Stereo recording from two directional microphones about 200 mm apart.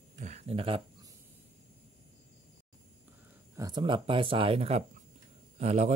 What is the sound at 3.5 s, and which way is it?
Speech, 20° right (ahead or behind).